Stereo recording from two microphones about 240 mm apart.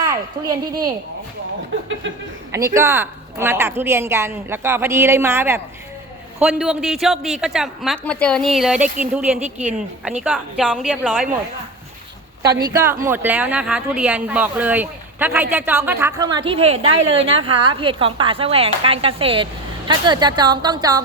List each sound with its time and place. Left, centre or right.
0.0 s a woman's voice: centre
2.5 s speech: centre
12.7 s speech: centre